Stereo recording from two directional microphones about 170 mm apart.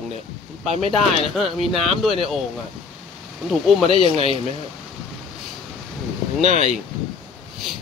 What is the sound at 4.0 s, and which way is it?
Speech, 35° left (ahead or behind).